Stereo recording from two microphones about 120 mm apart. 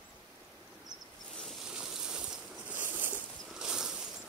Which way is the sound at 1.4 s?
5° right (ahead or behind).